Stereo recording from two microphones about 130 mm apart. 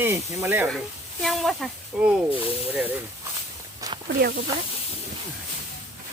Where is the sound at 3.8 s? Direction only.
25° right (ahead or behind).